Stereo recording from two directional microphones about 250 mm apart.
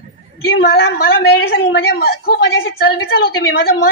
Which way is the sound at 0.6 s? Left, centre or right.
Left.